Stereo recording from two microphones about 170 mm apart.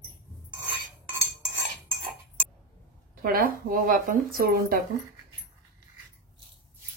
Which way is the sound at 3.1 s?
60° right (ahead or behind).